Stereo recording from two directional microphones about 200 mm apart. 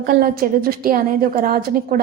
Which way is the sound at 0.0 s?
50° right (ahead or behind).